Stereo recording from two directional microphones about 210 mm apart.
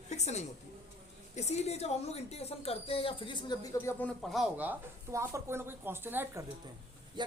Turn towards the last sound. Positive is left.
turn(degrees=-20)  # may be behind; listen again after turning